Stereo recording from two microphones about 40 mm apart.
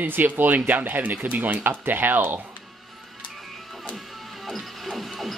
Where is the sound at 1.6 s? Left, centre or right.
Right.